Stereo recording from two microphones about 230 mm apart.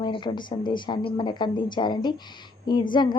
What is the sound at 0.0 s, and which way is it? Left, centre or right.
A woman's voice, centre.